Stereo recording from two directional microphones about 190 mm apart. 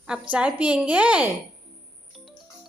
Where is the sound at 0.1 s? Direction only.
5° right (ahead or behind).